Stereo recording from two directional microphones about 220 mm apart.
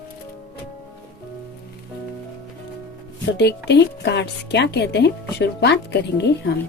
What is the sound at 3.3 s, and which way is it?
Speech, 50° left (ahead or behind).